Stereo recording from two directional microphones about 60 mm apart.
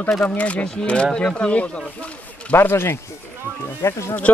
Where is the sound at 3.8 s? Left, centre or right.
Left.